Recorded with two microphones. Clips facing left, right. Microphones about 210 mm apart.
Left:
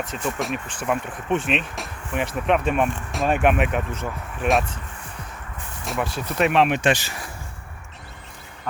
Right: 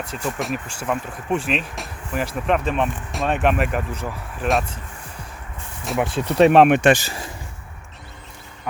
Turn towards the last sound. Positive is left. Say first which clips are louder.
# right 6 dB
turn(degrees=-55)  # may be behind; listen again after turning